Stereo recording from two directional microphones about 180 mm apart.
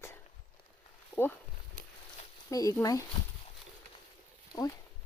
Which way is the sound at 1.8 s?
55° right (ahead or behind).